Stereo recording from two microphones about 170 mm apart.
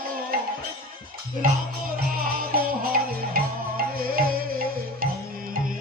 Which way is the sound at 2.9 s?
60° right (ahead or behind).